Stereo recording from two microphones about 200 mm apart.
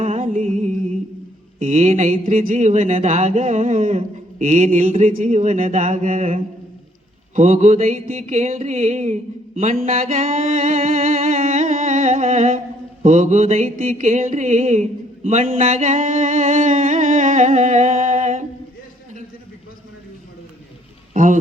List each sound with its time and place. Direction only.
0.0 s music: 40° right (ahead or behind)
1.5 s speech: 40° right (ahead or behind)
9.6 s music: 35° right (ahead or behind)
21.1 s a sound: 40° right (ahead or behind)